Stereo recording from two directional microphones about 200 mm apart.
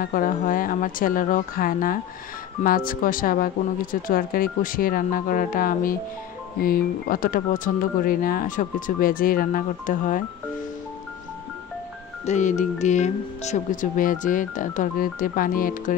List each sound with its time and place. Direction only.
0.0 s speech: 45° left (ahead or behind)
12.3 s speech: 35° left (ahead or behind)